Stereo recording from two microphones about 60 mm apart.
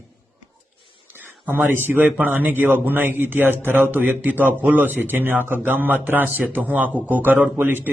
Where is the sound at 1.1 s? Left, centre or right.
Right.